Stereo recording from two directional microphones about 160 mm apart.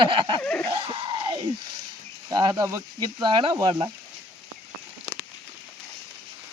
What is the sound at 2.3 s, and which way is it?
Speech, 25° right (ahead or behind).